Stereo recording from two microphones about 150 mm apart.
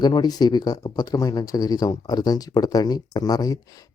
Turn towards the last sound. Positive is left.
turn(degrees=25)  # may be behind; listen again after turning